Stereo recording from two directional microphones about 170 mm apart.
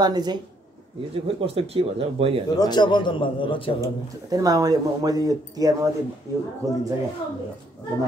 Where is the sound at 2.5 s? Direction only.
25° left (ahead or behind).